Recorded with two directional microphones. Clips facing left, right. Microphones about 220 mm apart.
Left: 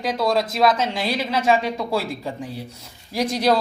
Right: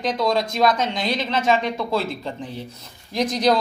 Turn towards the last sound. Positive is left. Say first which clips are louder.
# even
turn(degrees=5)  # may be behind; listen again after turning